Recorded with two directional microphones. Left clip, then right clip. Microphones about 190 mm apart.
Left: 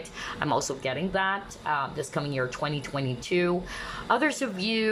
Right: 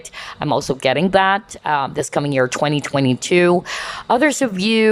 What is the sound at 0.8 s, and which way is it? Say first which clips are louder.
Speech: right 16 dB; 35° right (ahead or behind).